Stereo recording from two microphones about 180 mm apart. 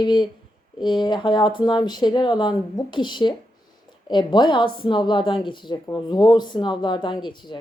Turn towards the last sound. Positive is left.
turn(degrees=25)  # may be behind; listen again after turning